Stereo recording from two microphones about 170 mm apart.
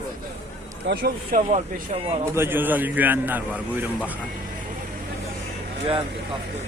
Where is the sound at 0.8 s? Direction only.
70° right (ahead or behind).